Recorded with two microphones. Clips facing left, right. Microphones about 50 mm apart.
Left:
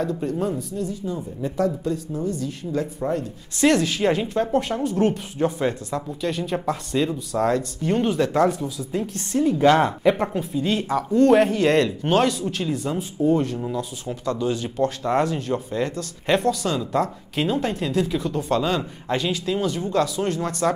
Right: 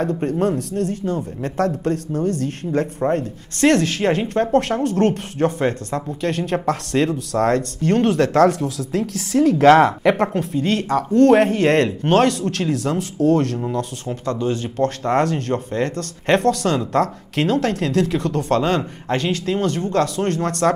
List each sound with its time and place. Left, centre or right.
0.4 s speech: right
6.2 s speech: right
14.2 s speech: right
14.8 s speech: right
19.1 s speech: right